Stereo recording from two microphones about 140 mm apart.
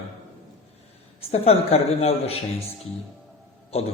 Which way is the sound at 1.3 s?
50° left (ahead or behind).